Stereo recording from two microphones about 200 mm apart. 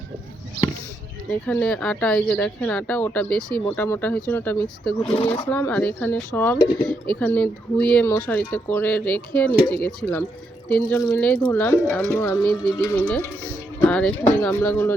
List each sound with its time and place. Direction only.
1.3 s speech: 5° left (ahead or behind)
5.1 s speech: 25° left (ahead or behind)
5.5 s speech: 10° left (ahead or behind)